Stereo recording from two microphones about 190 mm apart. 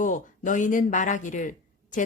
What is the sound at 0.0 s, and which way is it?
Speech, 45° left (ahead or behind).